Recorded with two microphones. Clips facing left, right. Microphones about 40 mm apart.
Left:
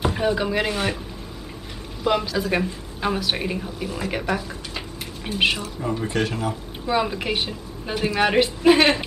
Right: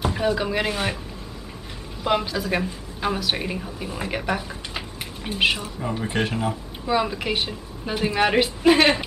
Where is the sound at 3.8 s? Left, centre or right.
Centre.